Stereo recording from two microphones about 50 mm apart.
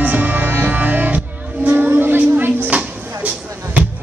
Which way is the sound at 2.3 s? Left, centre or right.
Right.